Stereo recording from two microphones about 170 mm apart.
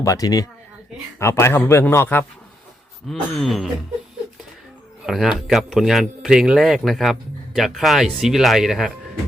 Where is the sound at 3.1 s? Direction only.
Centre (ahead or behind).